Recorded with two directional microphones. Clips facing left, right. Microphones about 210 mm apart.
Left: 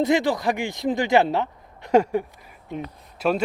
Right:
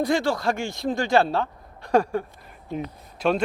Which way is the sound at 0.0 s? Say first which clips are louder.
Left 2 dB; 20° left (ahead or behind).